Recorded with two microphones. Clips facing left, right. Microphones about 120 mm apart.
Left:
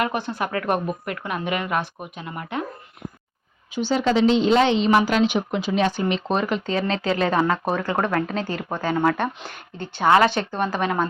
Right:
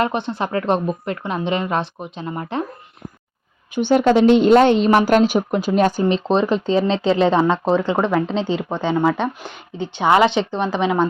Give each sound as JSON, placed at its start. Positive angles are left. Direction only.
{"t": 0.0, "sound": "speech", "side_deg": -25}
{"t": 3.7, "sound": "a woman's voice", "side_deg": -55}
{"t": 7.9, "sound": "speech", "side_deg": -10}
{"t": 8.3, "sound": "speech", "side_deg": -20}